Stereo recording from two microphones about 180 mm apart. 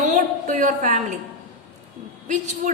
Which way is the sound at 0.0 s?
45° right (ahead or behind).